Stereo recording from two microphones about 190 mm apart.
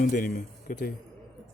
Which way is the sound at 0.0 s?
50° left (ahead or behind).